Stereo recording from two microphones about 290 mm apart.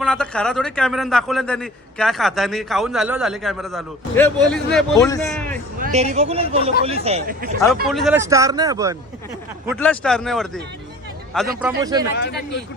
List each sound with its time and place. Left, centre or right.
0.0 s a man's voice: centre
5.8 s speech: right
7.9 s speech: centre
9.6 s a man's voice: centre
11.6 s speech: centre
12.1 s speech: left